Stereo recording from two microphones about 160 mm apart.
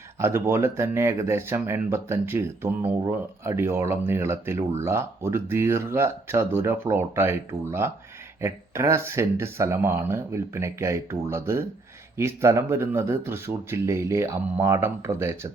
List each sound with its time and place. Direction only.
0.2 s speech: 15° right (ahead or behind)